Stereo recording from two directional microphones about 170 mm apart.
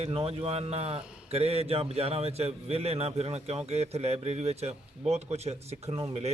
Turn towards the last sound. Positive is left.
turn(degrees=-35)  # may be behind; listen again after turning